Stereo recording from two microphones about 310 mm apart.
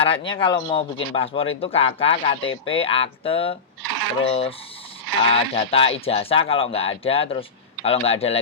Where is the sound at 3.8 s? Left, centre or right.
Right.